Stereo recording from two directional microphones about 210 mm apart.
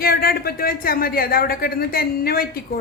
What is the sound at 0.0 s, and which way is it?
Speech, 45° left (ahead or behind).